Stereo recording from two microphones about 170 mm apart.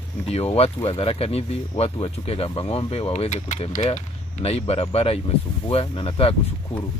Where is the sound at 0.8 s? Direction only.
35° left (ahead or behind).